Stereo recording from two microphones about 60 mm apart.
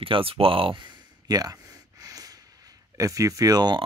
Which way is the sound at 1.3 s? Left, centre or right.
Right.